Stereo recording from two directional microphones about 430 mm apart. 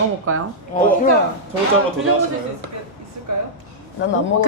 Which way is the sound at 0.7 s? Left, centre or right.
Centre.